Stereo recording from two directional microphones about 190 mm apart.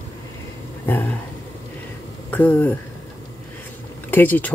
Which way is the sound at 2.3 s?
10° left (ahead or behind).